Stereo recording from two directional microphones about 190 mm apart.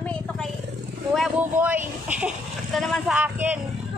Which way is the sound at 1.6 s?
10° right (ahead or behind).